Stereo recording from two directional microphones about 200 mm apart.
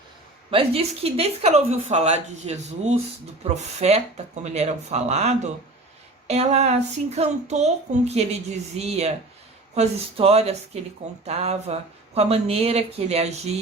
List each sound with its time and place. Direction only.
0.5 s speech: 30° right (ahead or behind)